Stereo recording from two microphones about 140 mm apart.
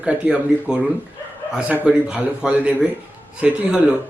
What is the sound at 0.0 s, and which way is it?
Speech, 5° right (ahead or behind).